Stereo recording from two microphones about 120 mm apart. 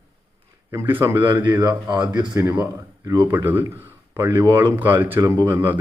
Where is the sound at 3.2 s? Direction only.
15° right (ahead or behind).